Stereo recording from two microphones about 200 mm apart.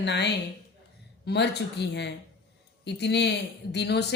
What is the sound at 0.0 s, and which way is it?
Speech, 60° left (ahead or behind).